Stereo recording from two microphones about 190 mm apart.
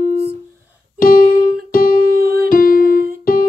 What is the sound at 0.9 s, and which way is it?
Music, 50° left (ahead or behind).